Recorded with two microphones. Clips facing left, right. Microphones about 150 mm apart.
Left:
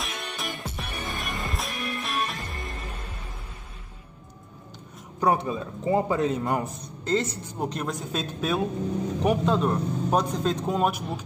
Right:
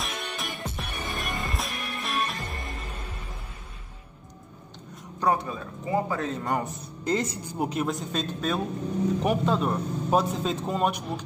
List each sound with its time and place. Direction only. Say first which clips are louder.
0.0 s music: even; centre (ahead or behind)
5.2 s a man's voice: left 2 dB; 20° left (ahead or behind)
6.4 s a man's voice: left 1 dB; centre (ahead or behind)
7.1 s a man's voice: left 1 dB; 10° right (ahead or behind); by 11.2 s 5° left (ahead or behind)